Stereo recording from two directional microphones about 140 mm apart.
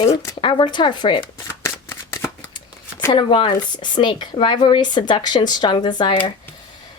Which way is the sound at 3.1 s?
40° left (ahead or behind).